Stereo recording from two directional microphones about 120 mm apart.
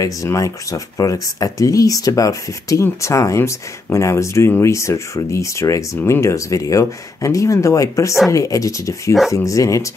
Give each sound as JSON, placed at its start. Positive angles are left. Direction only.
{"t": 0.0, "sound": "speech", "side_deg": 25}